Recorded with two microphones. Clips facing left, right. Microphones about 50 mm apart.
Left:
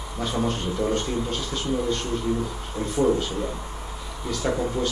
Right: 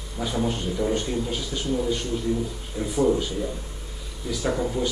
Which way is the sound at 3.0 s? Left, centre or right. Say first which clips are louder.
Even; centre.